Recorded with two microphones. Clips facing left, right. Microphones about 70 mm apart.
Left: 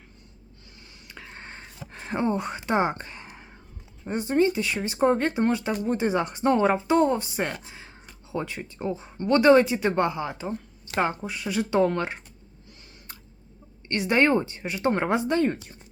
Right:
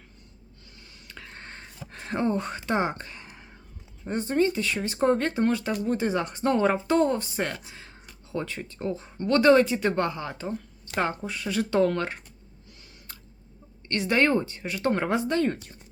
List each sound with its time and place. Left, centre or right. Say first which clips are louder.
1.0 s a sound: left 1 dB; centre
4.0 s speech: left 2 dB; centre
13.8 s speech: left 2 dB; left